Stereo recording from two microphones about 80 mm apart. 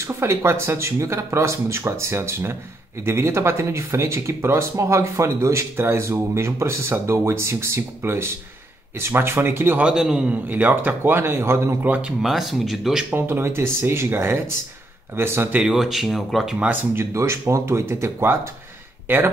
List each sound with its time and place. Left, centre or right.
0.0 s a man's voice: right
9.8 s a man's voice: centre
12.2 s speech: centre
13.1 s a man's voice: right
15.6 s speech: centre
16.9 s speech: right